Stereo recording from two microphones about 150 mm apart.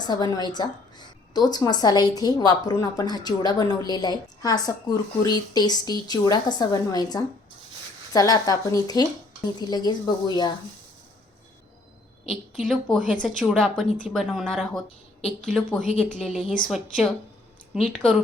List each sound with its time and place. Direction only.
0.0 s a woman's voice: 25° left (ahead or behind)
12.3 s speech: centre (ahead or behind)